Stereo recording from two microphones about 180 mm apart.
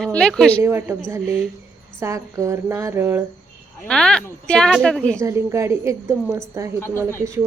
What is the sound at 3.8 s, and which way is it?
Speech, 5° left (ahead or behind).